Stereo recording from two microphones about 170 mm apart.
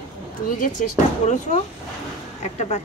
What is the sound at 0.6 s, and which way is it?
Speech, 45° left (ahead or behind).